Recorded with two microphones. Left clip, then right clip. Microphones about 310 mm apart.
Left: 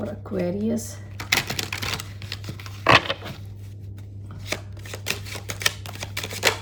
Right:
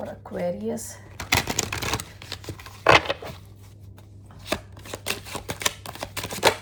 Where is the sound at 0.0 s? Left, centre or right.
Right.